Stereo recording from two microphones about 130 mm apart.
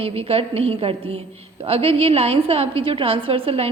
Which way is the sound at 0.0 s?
50° right (ahead or behind).